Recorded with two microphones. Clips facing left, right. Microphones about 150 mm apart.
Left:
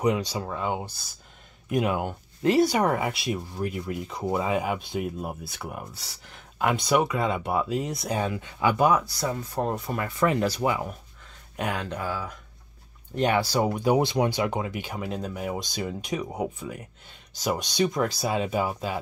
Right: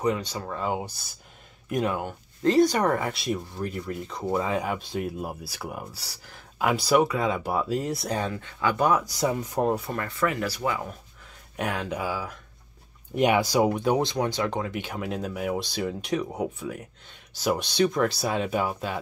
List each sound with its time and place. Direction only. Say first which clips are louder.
0.0 s speech: left 2 dB; 15° left (ahead or behind)
1.9 s speech: left 2 dB; 15° left (ahead or behind)
9.1 s speech: right 3 dB; 15° right (ahead or behind)
9.6 s speech: right 3 dB; 5° right (ahead or behind)
10.1 s speech: left 4 dB; 20° left (ahead or behind)
11.5 s speech: right 1 dB; centre (ahead or behind)
13.7 s speech: left 1 dB; 5° left (ahead or behind)